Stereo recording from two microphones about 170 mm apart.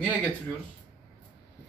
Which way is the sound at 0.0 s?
5° left (ahead or behind).